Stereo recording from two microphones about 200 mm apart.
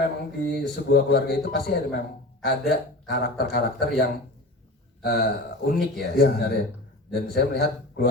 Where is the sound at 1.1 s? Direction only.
55° left (ahead or behind).